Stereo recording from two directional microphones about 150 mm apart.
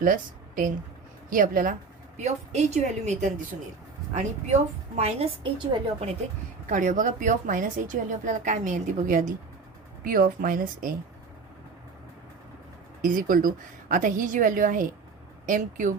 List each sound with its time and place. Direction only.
0.0 s a woman's voice: 65° right (ahead or behind)
2.1 s a woman's voice: 50° right (ahead or behind)
6.7 s a woman's voice: 55° right (ahead or behind)
13.0 s a woman's voice: 65° right (ahead or behind)